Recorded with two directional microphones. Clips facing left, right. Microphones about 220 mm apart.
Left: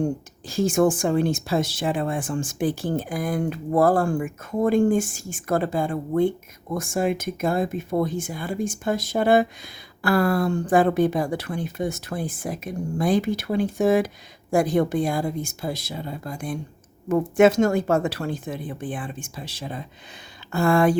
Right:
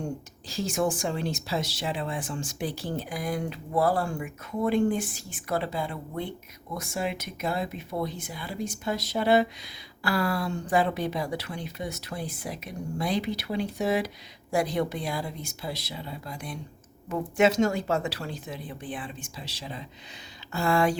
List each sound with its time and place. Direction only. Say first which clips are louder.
0.4 s speech: left 8 dB; 50° left (ahead or behind)